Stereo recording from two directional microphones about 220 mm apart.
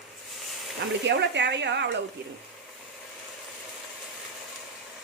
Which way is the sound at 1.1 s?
55° right (ahead or behind).